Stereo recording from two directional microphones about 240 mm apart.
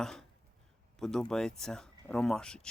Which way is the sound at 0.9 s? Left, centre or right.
Centre.